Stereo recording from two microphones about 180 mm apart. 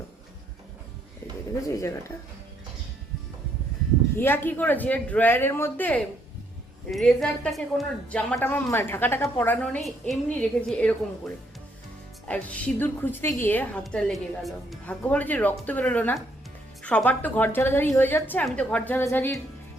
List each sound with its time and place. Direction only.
1.6 s speech: 15° left (ahead or behind)
4.2 s speech: 10° left (ahead or behind)
12.3 s speech: 10° left (ahead or behind)
13.8 s speech: centre (ahead or behind)